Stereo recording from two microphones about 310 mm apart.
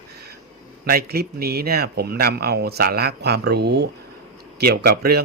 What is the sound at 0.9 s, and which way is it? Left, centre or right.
Speech, right.